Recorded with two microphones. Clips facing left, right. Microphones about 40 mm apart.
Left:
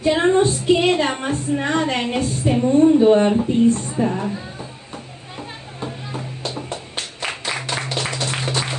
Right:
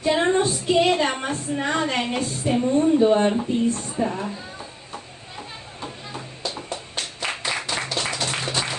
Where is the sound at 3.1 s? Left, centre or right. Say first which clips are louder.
Left 4 dB; centre.